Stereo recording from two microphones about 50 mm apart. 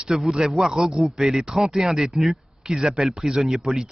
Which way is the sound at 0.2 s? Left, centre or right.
Centre.